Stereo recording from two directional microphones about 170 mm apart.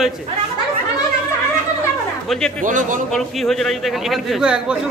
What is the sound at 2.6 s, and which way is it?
Speech, 50° right (ahead or behind).